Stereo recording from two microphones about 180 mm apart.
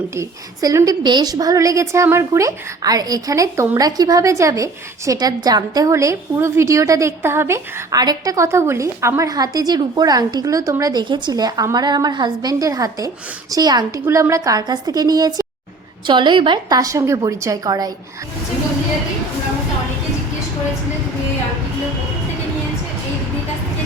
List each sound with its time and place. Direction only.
0.2 s a woman's voice: 15° right (ahead or behind)